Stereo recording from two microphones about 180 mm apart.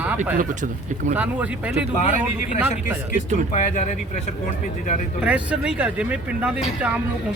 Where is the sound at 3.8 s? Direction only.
40° left (ahead or behind).